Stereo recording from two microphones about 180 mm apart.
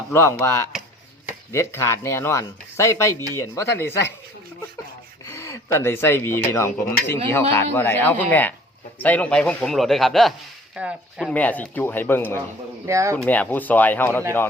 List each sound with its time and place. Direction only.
0.1 s speech: 15° left (ahead or behind)
5.2 s a man's voice: 15° left (ahead or behind); by 11.3 s 5° right (ahead or behind)
11.3 s speech: 10° left (ahead or behind)
12.8 s speech: 15° right (ahead or behind)
13.1 s speech: 10° left (ahead or behind)